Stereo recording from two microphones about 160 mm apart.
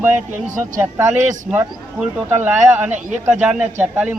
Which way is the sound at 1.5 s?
10° right (ahead or behind).